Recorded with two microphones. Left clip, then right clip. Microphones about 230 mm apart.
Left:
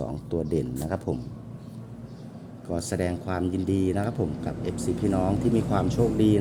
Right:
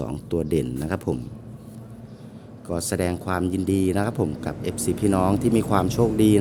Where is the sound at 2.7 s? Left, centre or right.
Right.